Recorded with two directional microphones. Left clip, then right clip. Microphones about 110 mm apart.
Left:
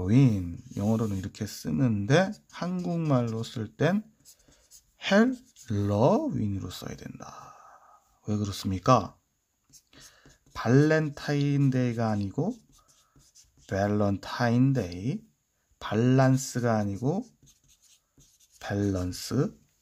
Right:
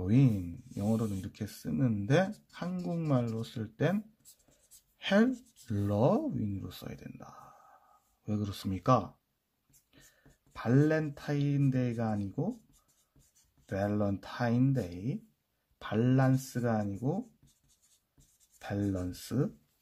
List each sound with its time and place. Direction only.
0.0 s speech: 25° left (ahead or behind)
13.7 s speech: 30° left (ahead or behind)
18.6 s speech: 25° left (ahead or behind)